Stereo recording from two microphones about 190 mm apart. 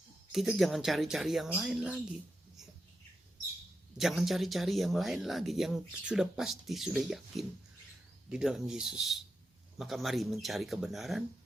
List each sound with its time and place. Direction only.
0.3 s speech: 5° right (ahead or behind)
3.9 s speech: centre (ahead or behind)